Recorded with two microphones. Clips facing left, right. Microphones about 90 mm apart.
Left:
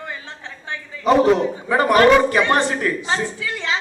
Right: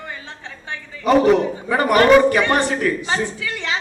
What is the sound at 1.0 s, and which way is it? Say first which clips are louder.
A man's voice: right 1 dB; 20° left (ahead or behind).